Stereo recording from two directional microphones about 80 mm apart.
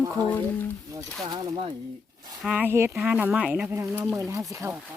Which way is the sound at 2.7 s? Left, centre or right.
Right.